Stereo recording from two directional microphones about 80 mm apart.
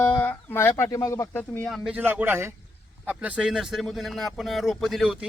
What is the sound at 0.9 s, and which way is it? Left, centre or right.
Speech, left.